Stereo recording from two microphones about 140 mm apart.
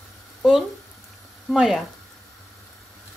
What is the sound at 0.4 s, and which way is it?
A woman's voice, centre (ahead or behind).